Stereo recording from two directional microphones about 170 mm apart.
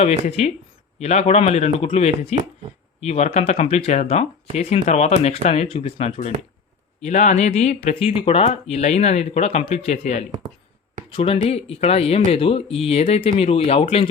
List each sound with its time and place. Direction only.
0.0 s speech: 40° left (ahead or behind)